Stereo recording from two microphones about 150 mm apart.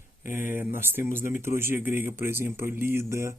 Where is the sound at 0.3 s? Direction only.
60° left (ahead or behind).